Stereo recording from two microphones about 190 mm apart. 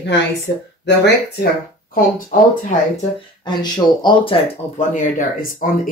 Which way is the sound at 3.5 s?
25° left (ahead or behind).